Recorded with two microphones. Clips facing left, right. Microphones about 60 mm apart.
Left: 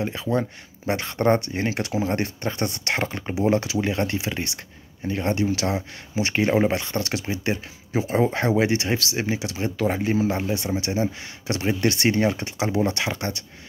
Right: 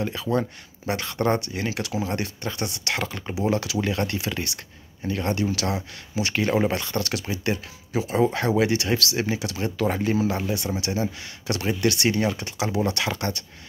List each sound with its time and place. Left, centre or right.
0.0 s speech: left